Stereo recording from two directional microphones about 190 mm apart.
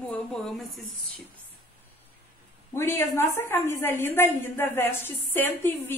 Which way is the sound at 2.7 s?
15° left (ahead or behind).